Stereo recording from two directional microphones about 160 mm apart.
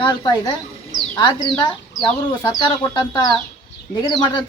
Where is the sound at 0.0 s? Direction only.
25° left (ahead or behind).